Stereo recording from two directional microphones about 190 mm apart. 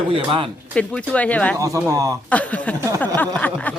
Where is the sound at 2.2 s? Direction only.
5° left (ahead or behind).